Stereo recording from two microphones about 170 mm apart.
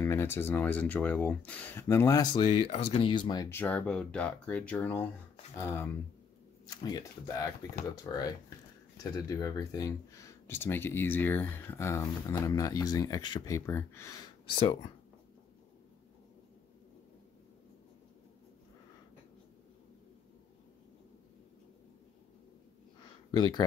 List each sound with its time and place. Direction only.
0.0 s speech: 15° left (ahead or behind)
2.7 s speech: 35° left (ahead or behind); by 14.1 s 15° left (ahead or behind)
14.5 s speech: 30° left (ahead or behind)
23.3 s speech: 25° left (ahead or behind)